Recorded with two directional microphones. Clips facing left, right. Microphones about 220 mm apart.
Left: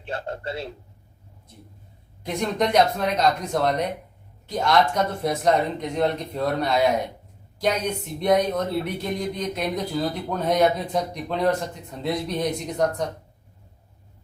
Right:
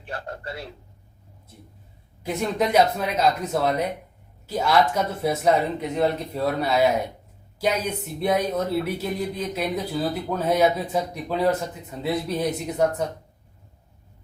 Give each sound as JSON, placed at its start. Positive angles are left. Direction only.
{"t": 0.0, "sound": "a man's voice", "side_deg": 25}
{"t": 2.2, "sound": "speech", "side_deg": -5}